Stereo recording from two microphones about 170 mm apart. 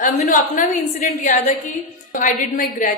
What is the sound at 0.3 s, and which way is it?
A woman's voice, 50° left (ahead or behind).